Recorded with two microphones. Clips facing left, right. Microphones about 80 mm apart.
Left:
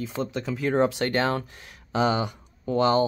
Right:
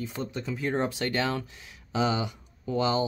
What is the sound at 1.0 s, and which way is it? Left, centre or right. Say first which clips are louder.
Speech: left 4 dB; left.